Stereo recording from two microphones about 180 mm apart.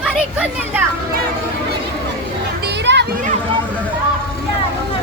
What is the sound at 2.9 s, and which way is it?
Children playing, 80° right.